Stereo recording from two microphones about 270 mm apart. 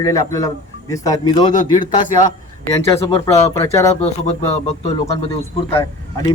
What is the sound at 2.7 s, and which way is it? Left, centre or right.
Speech, centre.